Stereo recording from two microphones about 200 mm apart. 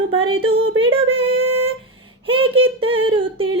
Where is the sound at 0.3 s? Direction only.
25° right (ahead or behind).